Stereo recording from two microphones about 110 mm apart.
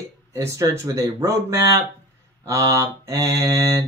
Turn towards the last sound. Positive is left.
turn(degrees=-25)  # may be behind; listen again after turning